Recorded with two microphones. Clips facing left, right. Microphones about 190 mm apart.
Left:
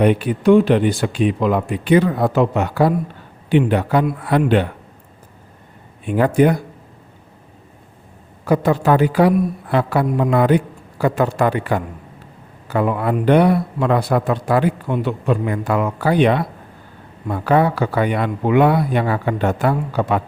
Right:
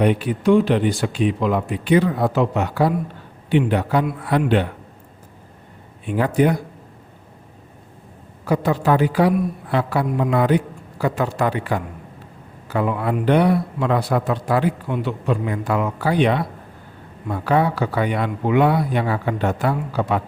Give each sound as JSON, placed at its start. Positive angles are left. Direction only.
{"t": 0.0, "sound": "speech", "side_deg": 55}
{"t": 6.1, "sound": "speech", "side_deg": 55}
{"t": 8.4, "sound": "speech", "side_deg": 55}
{"t": 17.4, "sound": "speech", "side_deg": 55}